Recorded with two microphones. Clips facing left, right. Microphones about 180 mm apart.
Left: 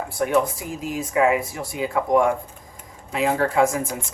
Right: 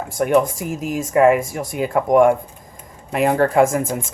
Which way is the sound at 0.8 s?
45° right (ahead or behind).